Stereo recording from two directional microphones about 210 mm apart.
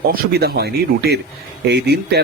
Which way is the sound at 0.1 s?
45° right (ahead or behind).